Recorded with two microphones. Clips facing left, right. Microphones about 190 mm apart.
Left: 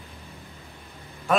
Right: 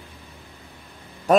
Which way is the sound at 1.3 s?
40° right (ahead or behind).